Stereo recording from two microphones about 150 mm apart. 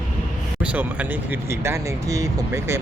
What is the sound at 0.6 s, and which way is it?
Speech, 10° right (ahead or behind).